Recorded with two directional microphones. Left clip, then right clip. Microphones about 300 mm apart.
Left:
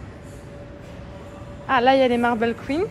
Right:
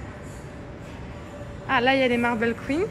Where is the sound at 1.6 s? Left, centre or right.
Centre.